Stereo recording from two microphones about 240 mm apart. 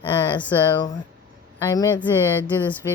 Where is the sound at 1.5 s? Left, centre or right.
Centre.